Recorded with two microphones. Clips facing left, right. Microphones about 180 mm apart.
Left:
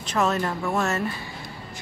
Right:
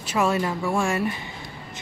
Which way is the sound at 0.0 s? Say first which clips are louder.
Right 1 dB; 10° right (ahead or behind).